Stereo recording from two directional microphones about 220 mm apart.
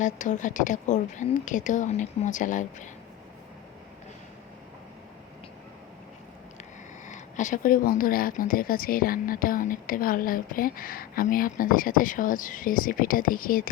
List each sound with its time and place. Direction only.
0.0 s a woman's voice: 35° left (ahead or behind)
7.1 s a woman's voice: 35° left (ahead or behind)